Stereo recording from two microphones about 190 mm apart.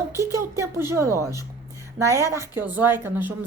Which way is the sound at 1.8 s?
15° right (ahead or behind).